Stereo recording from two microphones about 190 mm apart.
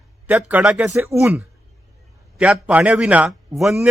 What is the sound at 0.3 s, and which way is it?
Speech, 10° right (ahead or behind).